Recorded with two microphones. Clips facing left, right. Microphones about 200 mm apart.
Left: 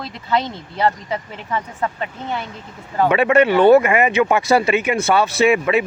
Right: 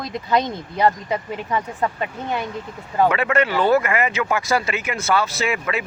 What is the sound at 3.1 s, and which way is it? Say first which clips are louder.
Speech: left 6 dB; 20° left (ahead or behind).